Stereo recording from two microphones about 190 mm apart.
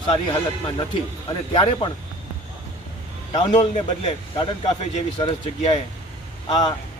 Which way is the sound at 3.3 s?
35° left (ahead or behind).